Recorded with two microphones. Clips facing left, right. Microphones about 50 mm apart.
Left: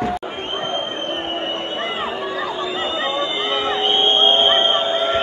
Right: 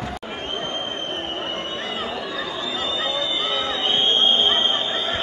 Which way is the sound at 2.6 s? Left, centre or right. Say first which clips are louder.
Left 2 dB; left.